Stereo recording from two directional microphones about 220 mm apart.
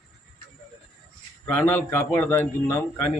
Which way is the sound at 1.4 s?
10° left (ahead or behind).